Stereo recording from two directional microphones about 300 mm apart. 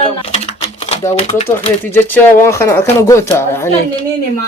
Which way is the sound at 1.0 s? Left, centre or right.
Centre.